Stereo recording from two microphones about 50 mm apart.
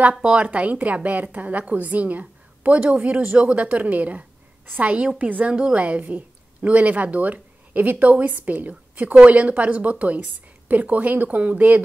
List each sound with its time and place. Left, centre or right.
0.2 s a woman's voice: right
5.5 s a woman's voice: right